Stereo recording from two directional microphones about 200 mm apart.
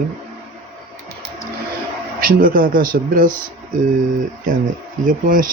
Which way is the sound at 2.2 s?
45° right (ahead or behind).